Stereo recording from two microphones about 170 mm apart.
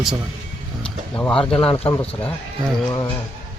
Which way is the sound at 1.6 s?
5° left (ahead or behind).